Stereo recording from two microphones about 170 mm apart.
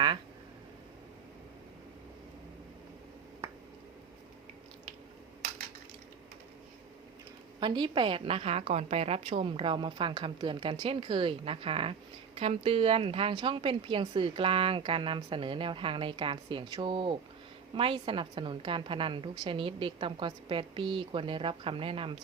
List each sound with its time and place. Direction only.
7.6 s a woman's voice: 25° right (ahead or behind)